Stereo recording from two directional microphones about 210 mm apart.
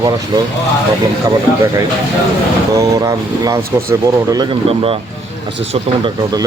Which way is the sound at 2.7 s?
15° right (ahead or behind).